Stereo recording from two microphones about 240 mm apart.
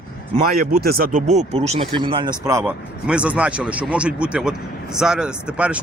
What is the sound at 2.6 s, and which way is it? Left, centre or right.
Speech, centre.